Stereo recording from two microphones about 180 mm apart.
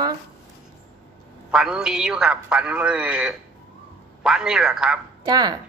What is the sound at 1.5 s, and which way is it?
A man's voice, 5° right (ahead or behind).